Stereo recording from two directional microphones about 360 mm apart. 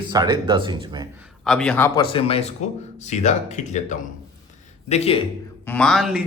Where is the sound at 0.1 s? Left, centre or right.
Centre.